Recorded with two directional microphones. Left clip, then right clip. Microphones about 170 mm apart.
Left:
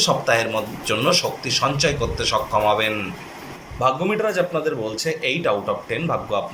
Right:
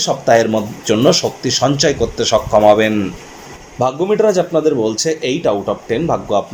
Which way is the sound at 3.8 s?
25° right (ahead or behind).